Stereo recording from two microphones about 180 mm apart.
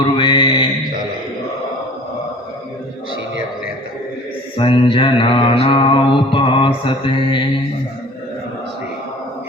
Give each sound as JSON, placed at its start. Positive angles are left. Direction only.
{"t": 0.0, "sound": "mantra", "side_deg": 25}
{"t": 4.5, "sound": "mantra", "side_deg": 30}